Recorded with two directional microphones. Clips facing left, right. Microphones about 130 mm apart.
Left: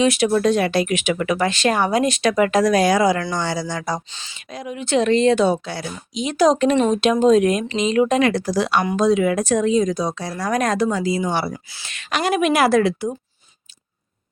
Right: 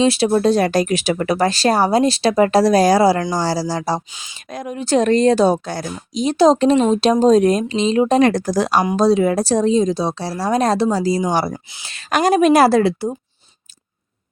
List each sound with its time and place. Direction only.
0.0 s speech: 30° right (ahead or behind)
4.1 s speech: 10° right (ahead or behind)
4.5 s speech: 45° right (ahead or behind)
11.5 s a woman's voice: 25° right (ahead or behind)
12.1 s speech: 40° right (ahead or behind)